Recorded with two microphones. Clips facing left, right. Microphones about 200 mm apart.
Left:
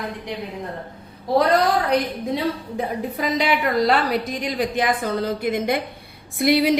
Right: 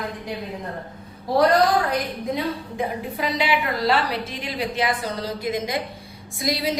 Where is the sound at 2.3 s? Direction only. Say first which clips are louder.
Left 3 dB; 40° left (ahead or behind).